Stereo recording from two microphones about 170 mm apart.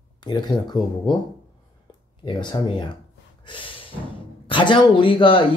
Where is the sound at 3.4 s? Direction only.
30° left (ahead or behind).